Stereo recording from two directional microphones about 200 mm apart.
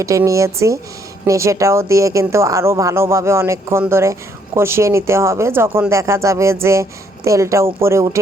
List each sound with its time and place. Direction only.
0.0 s speech: 15° right (ahead or behind)